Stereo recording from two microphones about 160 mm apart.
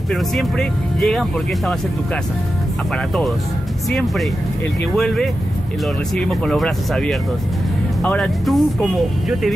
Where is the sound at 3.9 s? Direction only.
Centre (ahead or behind).